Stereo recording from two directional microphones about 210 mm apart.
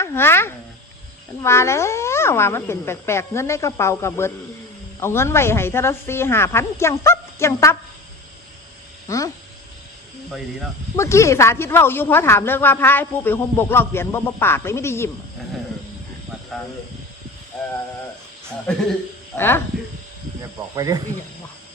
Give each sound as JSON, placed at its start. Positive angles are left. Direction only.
{"t": 0.0, "sound": "speech", "side_deg": 10}
{"t": 9.0, "sound": "speech", "side_deg": 15}
{"t": 10.9, "sound": "speech", "side_deg": 15}
{"t": 17.5, "sound": "speech", "side_deg": 0}
{"t": 19.4, "sound": "speech", "side_deg": 10}
{"t": 20.7, "sound": "speech", "side_deg": -15}